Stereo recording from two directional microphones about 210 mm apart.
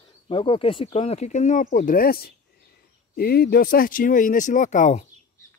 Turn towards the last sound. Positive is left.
turn(degrees=35)  # may be behind; listen again after turning